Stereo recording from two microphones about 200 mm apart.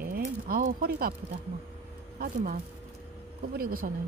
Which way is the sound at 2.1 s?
50° right (ahead or behind).